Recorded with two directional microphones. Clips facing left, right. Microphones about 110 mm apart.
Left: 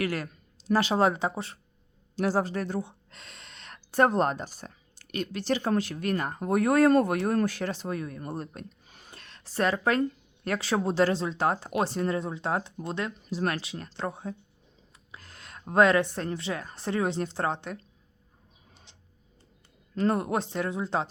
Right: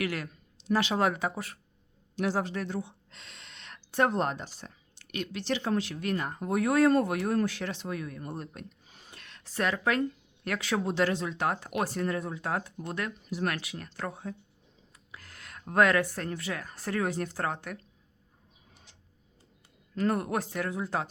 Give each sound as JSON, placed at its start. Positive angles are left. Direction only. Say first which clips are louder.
{"t": 0.0, "sound": "speech", "louder": "left 3 dB", "side_deg": 40}
{"t": 8.9, "sound": "a sound", "louder": "left 2 dB", "side_deg": 60}
{"t": 9.1, "sound": "speech", "louder": "left 4 dB", "side_deg": 35}
{"t": 18.9, "sound": "tick-tock", "louder": "left 1 dB", "side_deg": 20}
{"t": 20.0, "sound": "speech", "louder": "left 2 dB", "side_deg": 25}